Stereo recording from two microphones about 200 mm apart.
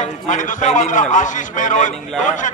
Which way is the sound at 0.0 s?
40° left (ahead or behind).